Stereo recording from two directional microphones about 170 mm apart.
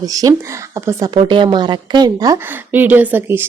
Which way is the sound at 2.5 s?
10° right (ahead or behind).